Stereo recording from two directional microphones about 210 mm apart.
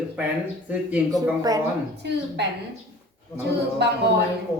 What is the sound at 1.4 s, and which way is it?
Speech, 15° right (ahead or behind).